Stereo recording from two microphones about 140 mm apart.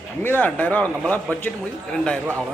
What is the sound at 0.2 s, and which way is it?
A man's voice, 15° left (ahead or behind).